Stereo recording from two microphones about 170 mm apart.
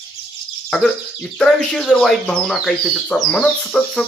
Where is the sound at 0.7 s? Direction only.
Centre (ahead or behind).